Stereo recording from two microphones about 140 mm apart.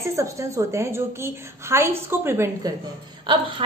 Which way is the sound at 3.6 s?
40° right (ahead or behind).